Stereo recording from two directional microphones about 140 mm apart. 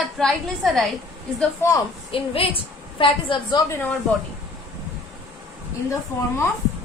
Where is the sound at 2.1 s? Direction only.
40° left (ahead or behind).